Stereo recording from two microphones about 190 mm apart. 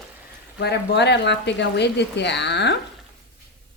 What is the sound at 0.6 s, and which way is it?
A woman's voice, 60° left (ahead or behind).